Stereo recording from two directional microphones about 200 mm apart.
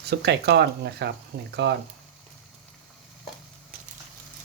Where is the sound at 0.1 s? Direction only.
55° right (ahead or behind).